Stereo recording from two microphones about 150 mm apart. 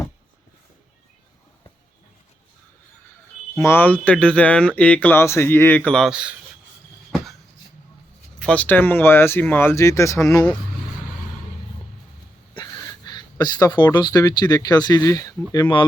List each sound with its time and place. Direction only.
3.6 s speech: 15° left (ahead or behind); by 6.3 s 5° right (ahead or behind)
8.4 s speech: 10° left (ahead or behind)
13.1 s speech: 30° left (ahead or behind)